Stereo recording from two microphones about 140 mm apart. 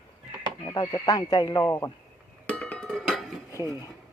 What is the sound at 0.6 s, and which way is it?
Speech, 25° left (ahead or behind).